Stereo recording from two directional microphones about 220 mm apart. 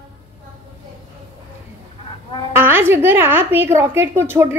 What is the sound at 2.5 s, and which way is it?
A woman's voice, 10° right (ahead or behind).